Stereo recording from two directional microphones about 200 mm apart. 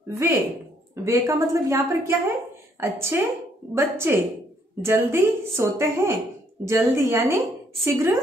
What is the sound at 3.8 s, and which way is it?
A woman's voice, 10° right (ahead or behind).